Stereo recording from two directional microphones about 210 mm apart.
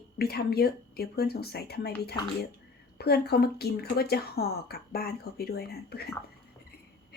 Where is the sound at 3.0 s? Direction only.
50° left (ahead or behind).